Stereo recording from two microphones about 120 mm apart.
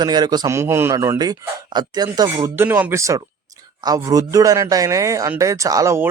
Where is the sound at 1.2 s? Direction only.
35° right (ahead or behind).